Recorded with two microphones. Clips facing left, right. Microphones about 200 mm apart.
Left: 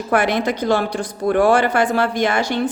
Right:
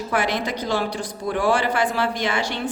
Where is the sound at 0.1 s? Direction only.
55° left (ahead or behind).